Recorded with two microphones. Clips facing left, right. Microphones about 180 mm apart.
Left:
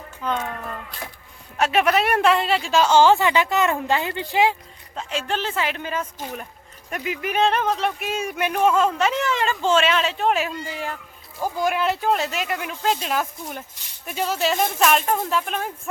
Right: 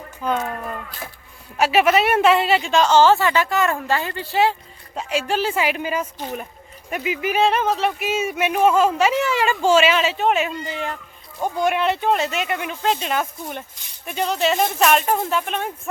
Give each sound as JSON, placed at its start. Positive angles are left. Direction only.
{"t": 0.2, "sound": "speech", "side_deg": -10}
{"t": 1.5, "sound": "speech", "side_deg": -5}
{"t": 4.9, "sound": "speech", "side_deg": -10}
{"t": 11.3, "sound": "speech", "side_deg": -25}
{"t": 11.6, "sound": "speech", "side_deg": 0}